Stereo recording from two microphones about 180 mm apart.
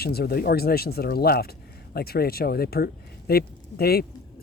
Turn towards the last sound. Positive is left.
turn(degrees=60)  # may be behind; listen again after turning